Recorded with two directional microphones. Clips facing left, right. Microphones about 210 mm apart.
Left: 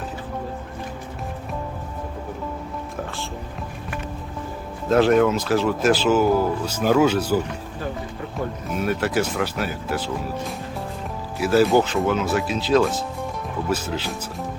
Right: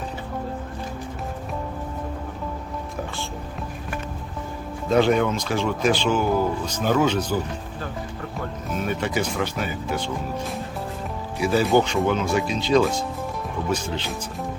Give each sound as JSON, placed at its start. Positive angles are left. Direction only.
{"t": 4.9, "sound": "speech", "side_deg": 0}
{"t": 8.7, "sound": "speech", "side_deg": 5}